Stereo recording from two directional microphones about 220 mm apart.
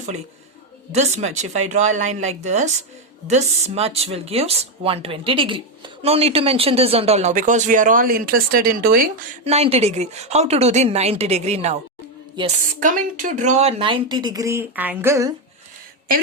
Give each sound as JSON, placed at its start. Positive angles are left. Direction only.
{"t": 0.9, "sound": "speech", "side_deg": -30}
{"t": 9.4, "sound": "speech", "side_deg": -30}